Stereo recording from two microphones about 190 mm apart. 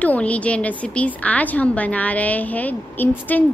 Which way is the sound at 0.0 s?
5° left (ahead or behind).